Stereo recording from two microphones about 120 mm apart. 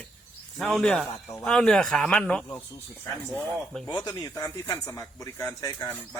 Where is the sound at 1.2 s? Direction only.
25° left (ahead or behind).